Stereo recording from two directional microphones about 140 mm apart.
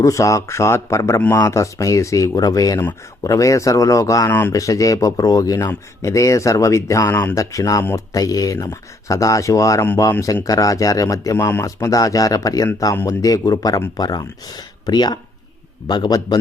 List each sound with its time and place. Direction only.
0.0 s speech: 20° left (ahead or behind)